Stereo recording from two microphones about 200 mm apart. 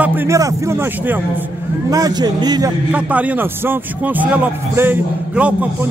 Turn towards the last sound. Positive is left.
turn(degrees=-5)  # may be behind; listen again after turning